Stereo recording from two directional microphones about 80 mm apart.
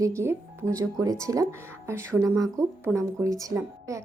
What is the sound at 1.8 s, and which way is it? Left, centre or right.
Speech, right.